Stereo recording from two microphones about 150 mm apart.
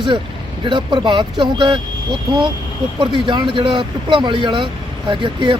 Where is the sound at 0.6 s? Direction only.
30° right (ahead or behind).